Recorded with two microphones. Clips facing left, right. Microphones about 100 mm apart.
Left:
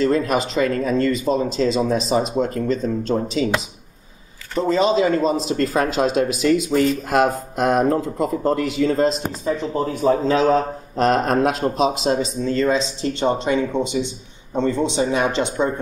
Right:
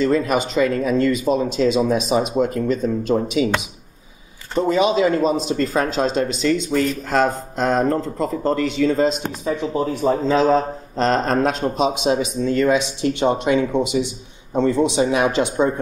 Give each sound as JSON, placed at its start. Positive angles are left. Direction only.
{"t": 0.0, "sound": "a man's voice", "side_deg": 0}
{"t": 4.6, "sound": "a man's voice", "side_deg": -5}
{"t": 12.8, "sound": "speech", "side_deg": -80}
{"t": 13.2, "sound": "a man's voice", "side_deg": -10}